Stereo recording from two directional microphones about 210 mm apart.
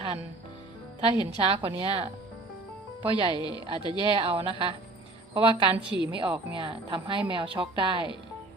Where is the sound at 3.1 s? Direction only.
25° right (ahead or behind).